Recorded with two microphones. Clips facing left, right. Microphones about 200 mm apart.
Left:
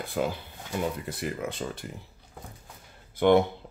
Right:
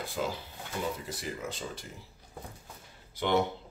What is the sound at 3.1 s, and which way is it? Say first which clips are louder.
Speech: left 8 dB; 55° left (ahead or behind).